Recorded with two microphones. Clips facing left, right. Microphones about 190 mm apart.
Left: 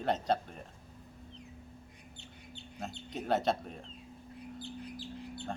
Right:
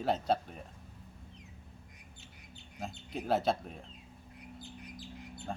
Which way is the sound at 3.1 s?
Centre (ahead or behind).